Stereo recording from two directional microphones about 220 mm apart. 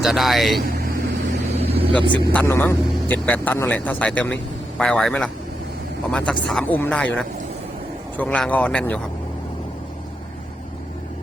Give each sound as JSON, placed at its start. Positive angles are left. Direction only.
{"t": 0.0, "sound": "speech", "side_deg": 0}
{"t": 1.5, "sound": "vehicle", "side_deg": -25}
{"t": 2.0, "sound": "speech", "side_deg": -20}
{"t": 2.3, "sound": "speech", "side_deg": 10}